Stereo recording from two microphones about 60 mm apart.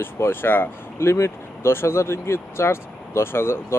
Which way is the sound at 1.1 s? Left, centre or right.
Left.